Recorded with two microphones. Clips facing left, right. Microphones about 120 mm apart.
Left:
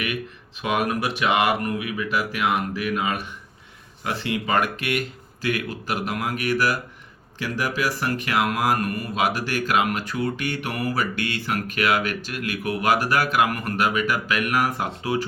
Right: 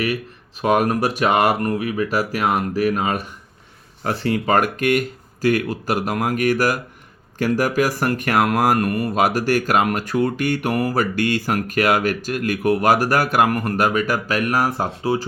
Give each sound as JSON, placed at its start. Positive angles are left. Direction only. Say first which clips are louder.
{"t": 0.6, "sound": "speech", "louder": "right 6 dB", "side_deg": -40}